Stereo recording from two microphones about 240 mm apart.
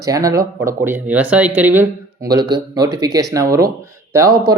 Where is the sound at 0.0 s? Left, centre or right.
Centre.